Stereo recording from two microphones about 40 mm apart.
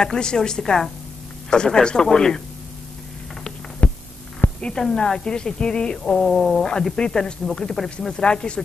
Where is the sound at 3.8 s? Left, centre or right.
Left.